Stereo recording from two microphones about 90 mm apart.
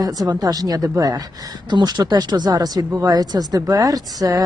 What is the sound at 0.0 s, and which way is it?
Speech, 45° right (ahead or behind).